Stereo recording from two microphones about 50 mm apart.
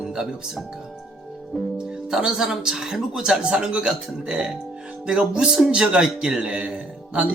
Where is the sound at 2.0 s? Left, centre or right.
Centre.